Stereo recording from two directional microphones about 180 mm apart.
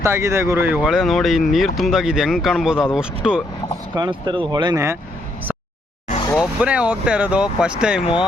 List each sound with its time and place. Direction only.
0.0 s speech: 15° right (ahead or behind)
3.9 s speech: 25° right (ahead or behind)
6.3 s speech: 5° right (ahead or behind)